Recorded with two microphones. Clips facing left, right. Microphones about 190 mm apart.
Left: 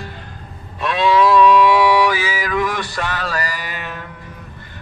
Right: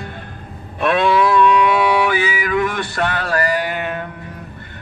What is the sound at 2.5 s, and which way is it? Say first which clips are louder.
Music: right 2 dB; 60° right (ahead or behind).